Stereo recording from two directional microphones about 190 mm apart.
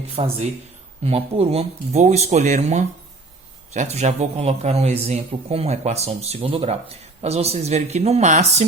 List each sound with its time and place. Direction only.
0.2 s a man's voice: 30° right (ahead or behind)